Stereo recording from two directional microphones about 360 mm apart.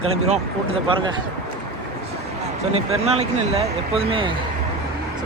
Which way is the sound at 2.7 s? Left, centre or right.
Centre.